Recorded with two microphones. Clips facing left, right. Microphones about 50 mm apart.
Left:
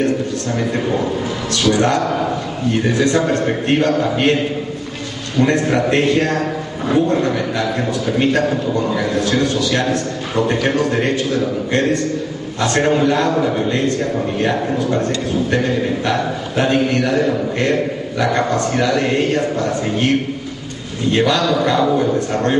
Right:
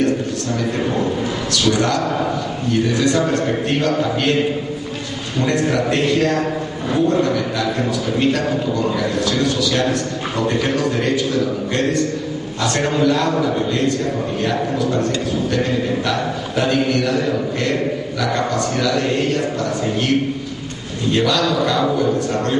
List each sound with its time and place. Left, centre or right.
1.5 s a sound: left
2.9 s a man's voice: left
5.4 s a man's voice: left
9.4 s a man's voice: left
12.6 s a man's voice: left
16.1 s a man's voice: left
21.1 s a man's voice: left